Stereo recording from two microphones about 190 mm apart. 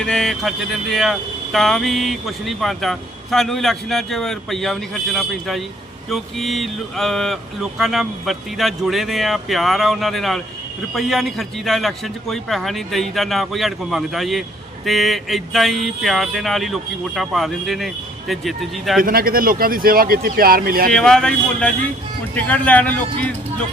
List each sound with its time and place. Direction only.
0.0 s speech: 5° left (ahead or behind)
19.0 s speech: 50° right (ahead or behind)
20.9 s speech: 5° left (ahead or behind)